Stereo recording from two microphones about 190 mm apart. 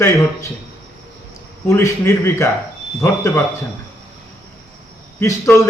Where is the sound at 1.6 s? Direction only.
15° left (ahead or behind).